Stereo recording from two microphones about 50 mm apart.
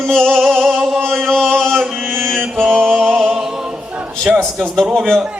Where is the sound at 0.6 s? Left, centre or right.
Centre.